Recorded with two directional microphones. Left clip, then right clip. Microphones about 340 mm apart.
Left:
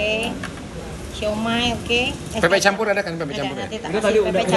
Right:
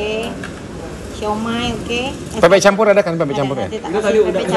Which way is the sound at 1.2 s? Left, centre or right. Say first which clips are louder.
Right 1 dB; centre.